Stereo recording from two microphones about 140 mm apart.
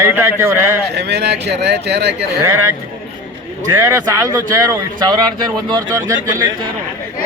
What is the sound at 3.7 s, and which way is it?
Speech, 25° right (ahead or behind).